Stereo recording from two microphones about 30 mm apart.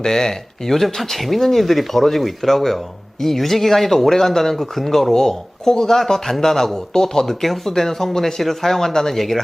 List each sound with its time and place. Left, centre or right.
0.0 s speech: centre
9.1 s speech: centre